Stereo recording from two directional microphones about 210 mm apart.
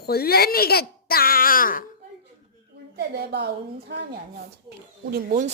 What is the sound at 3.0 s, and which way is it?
A woman's voice, 50° right (ahead or behind).